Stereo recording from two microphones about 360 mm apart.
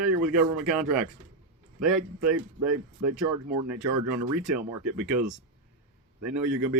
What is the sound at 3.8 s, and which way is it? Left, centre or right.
Speech, right.